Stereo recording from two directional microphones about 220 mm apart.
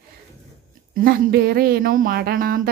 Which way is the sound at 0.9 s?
40° right (ahead or behind).